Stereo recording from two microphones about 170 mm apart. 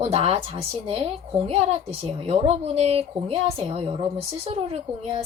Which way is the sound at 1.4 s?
35° right (ahead or behind).